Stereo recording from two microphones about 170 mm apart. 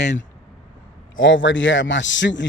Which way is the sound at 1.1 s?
90° left.